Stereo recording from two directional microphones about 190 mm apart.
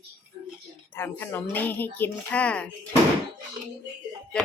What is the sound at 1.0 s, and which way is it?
A woman's voice, 10° left (ahead or behind).